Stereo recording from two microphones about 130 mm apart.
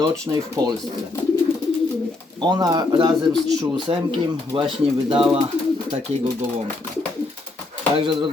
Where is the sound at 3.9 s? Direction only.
45° right (ahead or behind).